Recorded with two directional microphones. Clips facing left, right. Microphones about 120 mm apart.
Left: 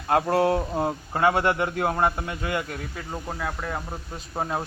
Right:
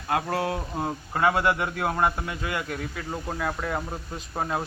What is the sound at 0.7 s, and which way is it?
Speech, 20° left (ahead or behind).